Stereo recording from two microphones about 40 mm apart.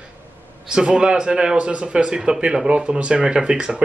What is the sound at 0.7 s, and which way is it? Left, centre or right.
Speech, right.